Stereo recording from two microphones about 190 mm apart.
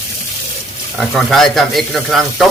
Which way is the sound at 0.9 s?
Centre (ahead or behind).